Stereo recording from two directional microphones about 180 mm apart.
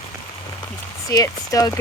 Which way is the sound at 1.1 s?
20° left (ahead or behind).